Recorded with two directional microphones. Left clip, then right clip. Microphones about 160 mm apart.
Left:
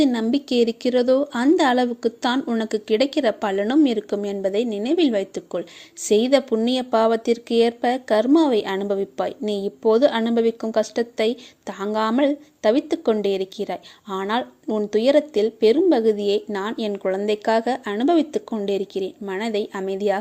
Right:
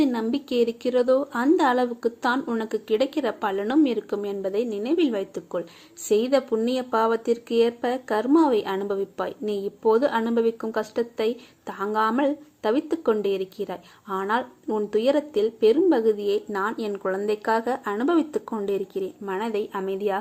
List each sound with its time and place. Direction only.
0.0 s speech: 40° left (ahead or behind)